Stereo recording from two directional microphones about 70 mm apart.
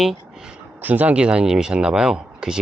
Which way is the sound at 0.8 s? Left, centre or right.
Right.